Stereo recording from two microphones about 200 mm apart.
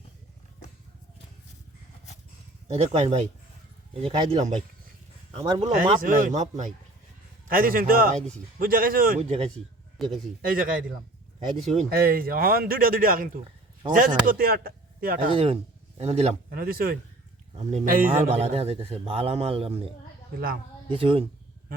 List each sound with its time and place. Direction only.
2.6 s a man's voice: 35° right (ahead or behind)
6.0 s a man's voice: 40° right (ahead or behind)
10.0 s speech: centre (ahead or behind)
10.4 s speech: 45° right (ahead or behind)
11.5 s a man's voice: 35° right (ahead or behind)
11.9 s speech: 50° right (ahead or behind)
15.3 s a man's voice: 30° right (ahead or behind)
16.5 s speech: 45° right (ahead or behind)
17.5 s a man's voice: 35° right (ahead or behind)
20.9 s speech: 25° right (ahead or behind)